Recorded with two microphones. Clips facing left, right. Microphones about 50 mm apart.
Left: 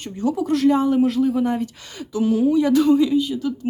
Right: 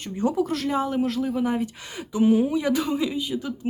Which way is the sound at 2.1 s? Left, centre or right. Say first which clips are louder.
Left 1 dB; right.